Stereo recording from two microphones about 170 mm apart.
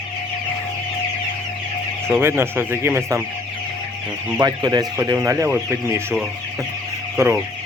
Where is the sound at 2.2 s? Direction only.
15° right (ahead or behind).